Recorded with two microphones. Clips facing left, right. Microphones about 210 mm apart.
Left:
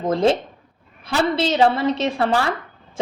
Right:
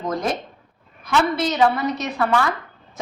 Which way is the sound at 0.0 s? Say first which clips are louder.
Left 6 dB; 25° left (ahead or behind).